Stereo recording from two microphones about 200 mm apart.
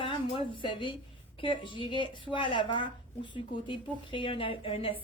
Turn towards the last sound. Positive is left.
turn(degrees=25)  # may be behind; listen again after turning